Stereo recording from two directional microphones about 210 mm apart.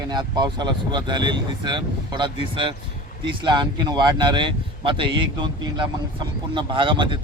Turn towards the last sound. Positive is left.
turn(degrees=-25)  # may be behind; listen again after turning